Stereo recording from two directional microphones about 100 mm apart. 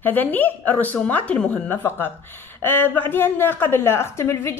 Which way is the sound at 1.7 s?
20° left (ahead or behind).